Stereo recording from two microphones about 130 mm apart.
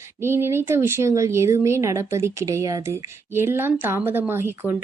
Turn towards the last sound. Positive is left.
turn(degrees=-15)  # may be behind; listen again after turning